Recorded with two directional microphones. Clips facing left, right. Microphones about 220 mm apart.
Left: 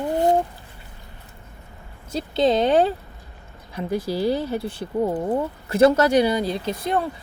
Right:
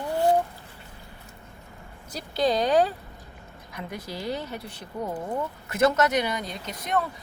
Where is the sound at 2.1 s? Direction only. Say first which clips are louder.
Left 5 dB; 25° left (ahead or behind).